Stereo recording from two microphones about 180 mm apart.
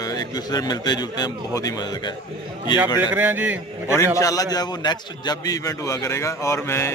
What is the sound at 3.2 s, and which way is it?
Speech, 10° right (ahead or behind).